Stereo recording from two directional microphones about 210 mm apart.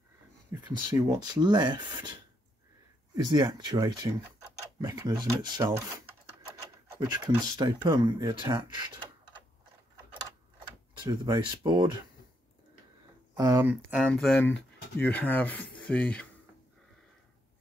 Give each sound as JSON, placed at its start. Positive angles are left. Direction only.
{"t": 0.7, "sound": "speech", "side_deg": -15}
{"t": 3.3, "sound": "speech", "side_deg": -20}
{"t": 11.0, "sound": "speech", "side_deg": -20}
{"t": 13.3, "sound": "speech", "side_deg": -15}